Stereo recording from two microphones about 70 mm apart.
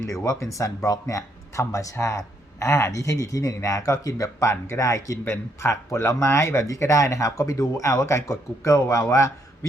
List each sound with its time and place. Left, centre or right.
0.1 s speech: left
5.2 s speech: left